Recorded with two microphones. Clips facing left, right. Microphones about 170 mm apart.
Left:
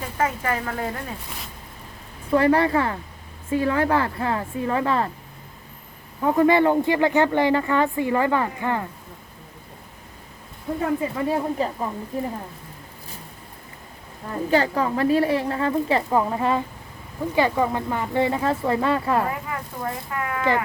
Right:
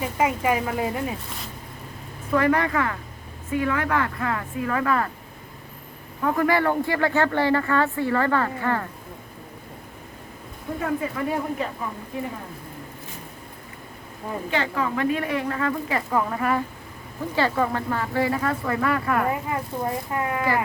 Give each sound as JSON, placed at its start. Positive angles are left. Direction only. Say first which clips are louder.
{"t": 0.0, "sound": "speech", "louder": "right 2 dB", "side_deg": -10}
{"t": 2.3, "sound": "a woman's voice", "louder": "left 3 dB", "side_deg": 30}
{"t": 6.2, "sound": "speech", "louder": "left 4 dB", "side_deg": 20}
{"t": 11.0, "sound": "a woman's voice", "louder": "left 3 dB", "side_deg": 30}
{"t": 14.5, "sound": "a woman's voice", "louder": "left 5 dB", "side_deg": 35}
{"t": 19.3, "sound": "speech", "louder": "right 4 dB", "side_deg": -25}